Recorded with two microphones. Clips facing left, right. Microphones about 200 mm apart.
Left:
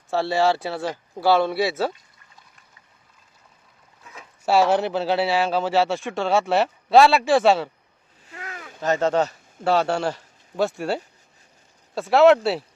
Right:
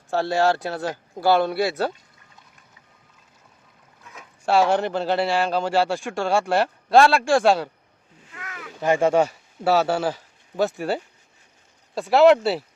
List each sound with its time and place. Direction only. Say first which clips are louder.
0.1 s speech: even; centre (ahead or behind)
4.1 s speech: even; 5° left (ahead or behind)
8.3 s a sound: left 1 dB; 30° left (ahead or behind)
8.8 s speech: right 2 dB; 10° right (ahead or behind)